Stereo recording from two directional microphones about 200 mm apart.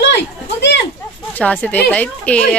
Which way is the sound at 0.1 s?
60° left (ahead or behind).